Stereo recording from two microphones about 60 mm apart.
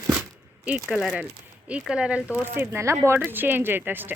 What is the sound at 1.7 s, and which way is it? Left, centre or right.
Speech, centre.